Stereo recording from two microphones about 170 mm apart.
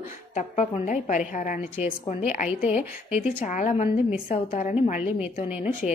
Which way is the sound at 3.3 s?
45° left (ahead or behind).